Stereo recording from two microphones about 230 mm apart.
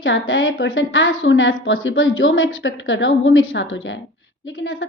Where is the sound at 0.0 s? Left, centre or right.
Left.